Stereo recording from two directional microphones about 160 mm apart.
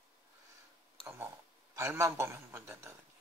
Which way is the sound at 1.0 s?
15° right (ahead or behind).